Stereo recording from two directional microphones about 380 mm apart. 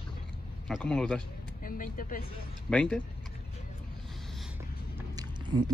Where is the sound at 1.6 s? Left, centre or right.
Left.